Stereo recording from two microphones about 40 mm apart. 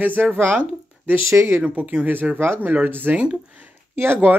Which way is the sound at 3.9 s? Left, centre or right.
Right.